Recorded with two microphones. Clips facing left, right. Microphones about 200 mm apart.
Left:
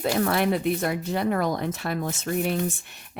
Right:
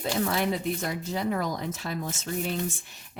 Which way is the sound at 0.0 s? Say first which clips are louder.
Left 4 dB; 60° left (ahead or behind).